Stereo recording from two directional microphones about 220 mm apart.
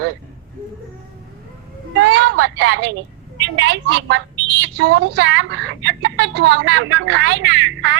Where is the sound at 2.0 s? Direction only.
55° right (ahead or behind).